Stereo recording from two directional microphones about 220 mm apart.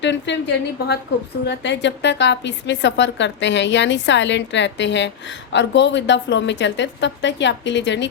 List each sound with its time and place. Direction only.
0.0 s a woman's voice: 55° left (ahead or behind)